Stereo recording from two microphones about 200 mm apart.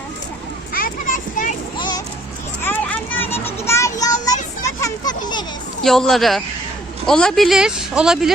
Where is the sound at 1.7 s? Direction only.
20° left (ahead or behind).